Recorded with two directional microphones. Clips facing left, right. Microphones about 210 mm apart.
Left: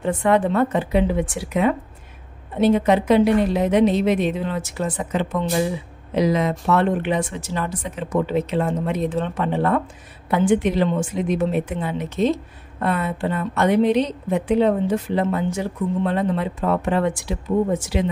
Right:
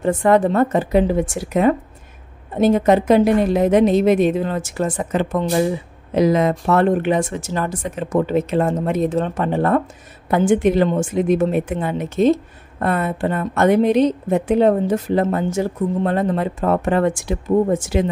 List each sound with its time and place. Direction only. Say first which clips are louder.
0.0 s a woman's voice: right 3 dB; 45° right (ahead or behind)